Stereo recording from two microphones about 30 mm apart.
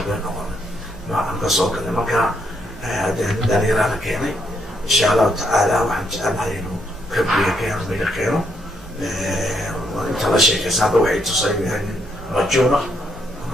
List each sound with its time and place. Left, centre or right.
1.1 s speech: centre